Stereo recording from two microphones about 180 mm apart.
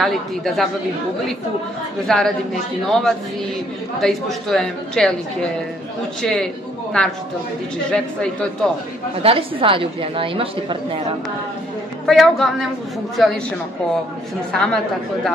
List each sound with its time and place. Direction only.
0.0 s a woman's voice: centre (ahead or behind)
2.0 s a woman's voice: centre (ahead or behind)
9.2 s a woman's voice: 30° right (ahead or behind)
12.1 s a woman's voice: centre (ahead or behind)
14.5 s a woman's voice: 5° left (ahead or behind)